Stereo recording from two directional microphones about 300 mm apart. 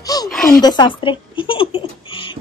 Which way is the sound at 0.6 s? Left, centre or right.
Centre.